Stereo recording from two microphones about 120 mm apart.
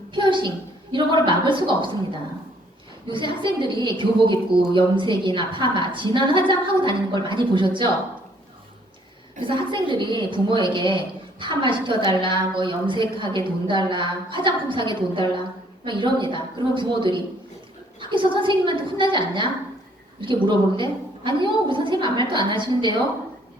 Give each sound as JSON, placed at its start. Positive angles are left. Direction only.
{"t": 0.1, "sound": "a woman's voice", "side_deg": -40}
{"t": 3.1, "sound": "a woman's voice", "side_deg": -45}
{"t": 9.4, "sound": "a woman's voice", "side_deg": -40}